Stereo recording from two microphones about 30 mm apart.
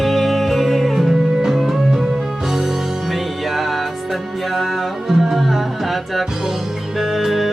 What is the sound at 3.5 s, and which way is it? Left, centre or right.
Music, centre.